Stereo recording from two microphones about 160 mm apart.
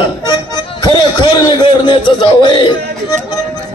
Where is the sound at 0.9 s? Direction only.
30° left (ahead or behind).